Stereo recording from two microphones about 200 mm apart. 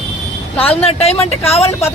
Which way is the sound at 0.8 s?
30° left (ahead or behind).